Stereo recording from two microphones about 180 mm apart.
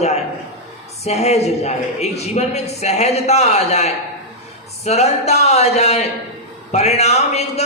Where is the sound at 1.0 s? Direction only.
35° left (ahead or behind).